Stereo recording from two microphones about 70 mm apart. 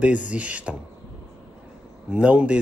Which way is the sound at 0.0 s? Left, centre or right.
Centre.